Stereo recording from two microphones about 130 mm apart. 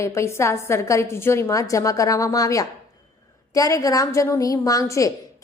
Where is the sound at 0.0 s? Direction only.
20° left (ahead or behind).